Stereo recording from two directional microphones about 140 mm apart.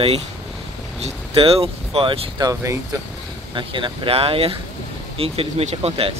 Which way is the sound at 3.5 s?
35° right (ahead or behind).